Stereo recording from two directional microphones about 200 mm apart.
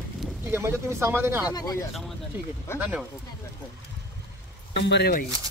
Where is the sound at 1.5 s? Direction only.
20° left (ahead or behind).